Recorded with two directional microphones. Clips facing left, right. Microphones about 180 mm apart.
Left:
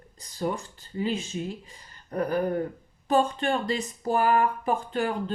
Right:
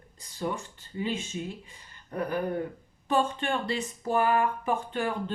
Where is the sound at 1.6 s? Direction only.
40° left (ahead or behind).